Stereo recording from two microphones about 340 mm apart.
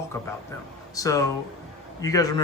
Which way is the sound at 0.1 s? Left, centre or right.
Centre.